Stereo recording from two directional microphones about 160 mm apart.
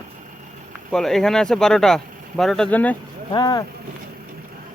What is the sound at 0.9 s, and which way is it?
Speech, 5° left (ahead or behind).